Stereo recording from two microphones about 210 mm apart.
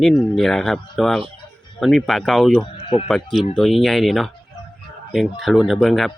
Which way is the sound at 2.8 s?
25° left (ahead or behind).